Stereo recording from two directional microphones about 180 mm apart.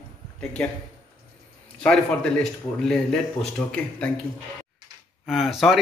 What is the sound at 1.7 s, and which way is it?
Speech, 5° left (ahead or behind).